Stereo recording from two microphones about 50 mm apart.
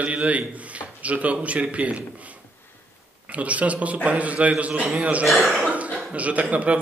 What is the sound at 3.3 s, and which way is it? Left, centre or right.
A man's voice, right.